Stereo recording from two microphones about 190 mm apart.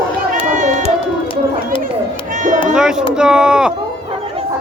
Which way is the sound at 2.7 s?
5° right (ahead or behind).